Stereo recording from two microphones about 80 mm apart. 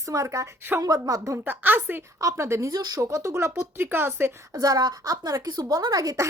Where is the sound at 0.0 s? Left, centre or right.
Right.